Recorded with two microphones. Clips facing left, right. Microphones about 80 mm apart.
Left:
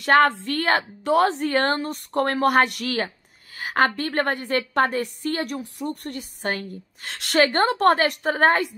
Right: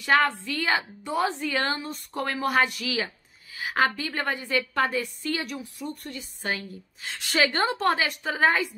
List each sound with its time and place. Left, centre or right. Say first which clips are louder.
0.0 s a woman's voice: left 5 dB; left